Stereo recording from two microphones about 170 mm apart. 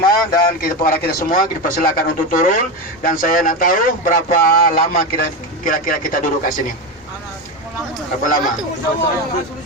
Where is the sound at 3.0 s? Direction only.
55° left (ahead or behind).